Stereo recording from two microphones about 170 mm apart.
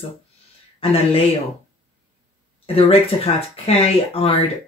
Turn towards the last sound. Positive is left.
turn(degrees=35)  # may be behind; listen again after turning